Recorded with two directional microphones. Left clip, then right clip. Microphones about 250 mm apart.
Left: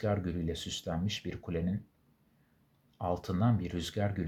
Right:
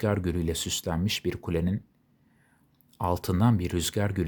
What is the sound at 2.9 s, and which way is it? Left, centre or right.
Speech, right.